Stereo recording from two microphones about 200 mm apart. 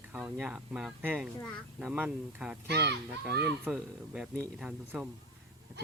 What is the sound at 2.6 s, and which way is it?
Speech, 55° right (ahead or behind).